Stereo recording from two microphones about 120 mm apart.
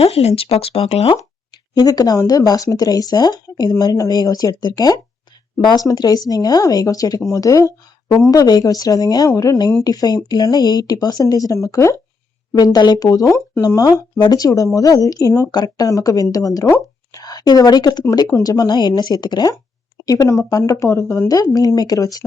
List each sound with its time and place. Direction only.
0.0 s speech: 60° left (ahead or behind)
1.8 s speech: 35° left (ahead or behind)